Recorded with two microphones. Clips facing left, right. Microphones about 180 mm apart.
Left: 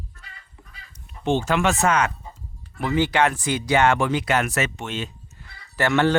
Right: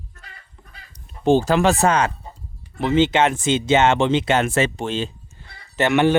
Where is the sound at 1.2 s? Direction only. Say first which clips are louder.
Right 5 dB; 35° right (ahead or behind); by 6.2 s 15° right (ahead or behind).